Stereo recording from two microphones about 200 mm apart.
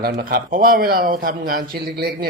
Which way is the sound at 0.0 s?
50° right (ahead or behind).